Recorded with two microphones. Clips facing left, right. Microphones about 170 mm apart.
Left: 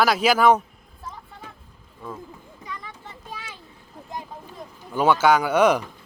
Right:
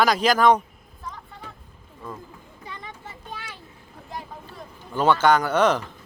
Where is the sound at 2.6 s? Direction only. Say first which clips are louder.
Left 2 dB; 30° right (ahead or behind).